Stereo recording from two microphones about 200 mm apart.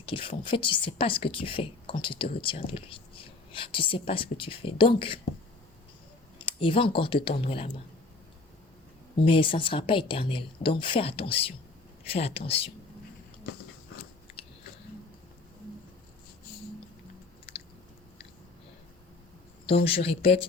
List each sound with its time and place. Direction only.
0.0 s a woman's voice: 25° left (ahead or behind)
6.4 s a woman's voice: 25° left (ahead or behind)
9.2 s a woman's voice: 25° left (ahead or behind)
19.6 s a woman's voice: 30° left (ahead or behind)